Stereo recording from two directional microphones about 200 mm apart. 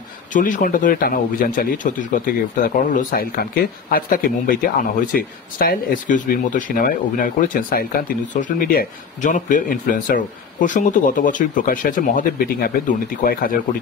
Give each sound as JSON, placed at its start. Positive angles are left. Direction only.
{"t": 0.3, "sound": "speech", "side_deg": 40}